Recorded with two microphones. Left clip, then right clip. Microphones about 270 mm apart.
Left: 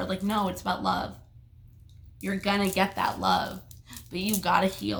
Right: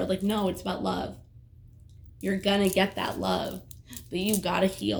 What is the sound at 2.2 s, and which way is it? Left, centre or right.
Speech, centre.